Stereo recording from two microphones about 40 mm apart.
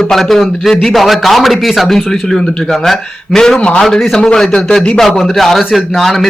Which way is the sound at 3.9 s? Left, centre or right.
Centre.